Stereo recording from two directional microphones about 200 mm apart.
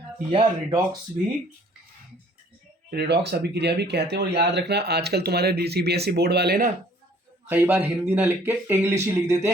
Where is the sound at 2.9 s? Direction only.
55° right (ahead or behind).